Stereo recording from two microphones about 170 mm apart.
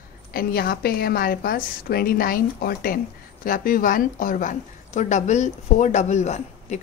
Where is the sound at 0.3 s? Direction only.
60° left (ahead or behind).